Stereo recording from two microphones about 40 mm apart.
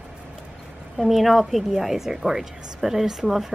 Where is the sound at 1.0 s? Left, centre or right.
Centre.